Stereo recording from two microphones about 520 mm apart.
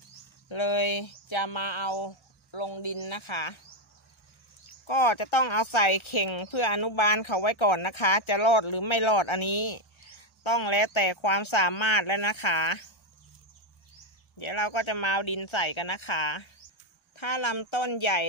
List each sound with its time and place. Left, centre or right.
0.5 s speech: left
4.8 s speech: left
14.4 s speech: left